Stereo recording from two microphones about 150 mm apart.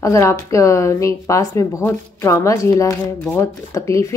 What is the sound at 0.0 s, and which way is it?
A woman's voice, 20° left (ahead or behind).